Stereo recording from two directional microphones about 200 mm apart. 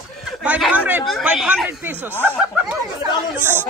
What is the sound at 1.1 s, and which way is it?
Speech, 5° right (ahead or behind).